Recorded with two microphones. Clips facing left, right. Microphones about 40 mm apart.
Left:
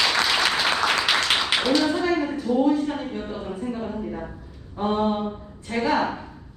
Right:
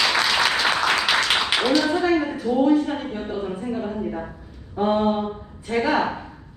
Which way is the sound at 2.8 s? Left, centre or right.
Centre.